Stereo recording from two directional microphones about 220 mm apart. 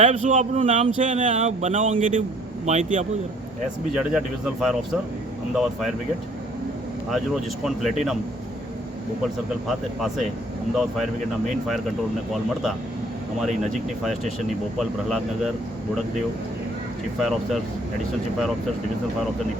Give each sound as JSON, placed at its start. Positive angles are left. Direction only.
{"t": 0.0, "sound": "speech", "side_deg": -35}
{"t": 3.9, "sound": "speech", "side_deg": 0}
{"t": 7.1, "sound": "speech", "side_deg": 0}
{"t": 9.2, "sound": "speech", "side_deg": 0}
{"t": 13.7, "sound": "speech", "side_deg": 0}
{"t": 17.2, "sound": "speech", "side_deg": 0}